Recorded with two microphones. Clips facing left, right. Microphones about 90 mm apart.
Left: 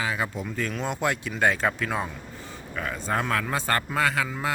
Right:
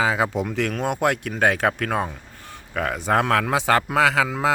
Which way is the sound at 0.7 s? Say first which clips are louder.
Right 4 dB; 55° right (ahead or behind).